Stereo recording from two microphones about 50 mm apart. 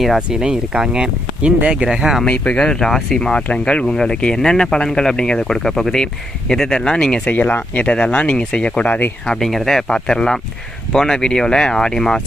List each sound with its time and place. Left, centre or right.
0.2 s speech: centre
1.9 s speech: centre
2.2 s speech: left
7.3 s speech: left
7.9 s speech: left
8.9 s speech: left
9.2 s speech: centre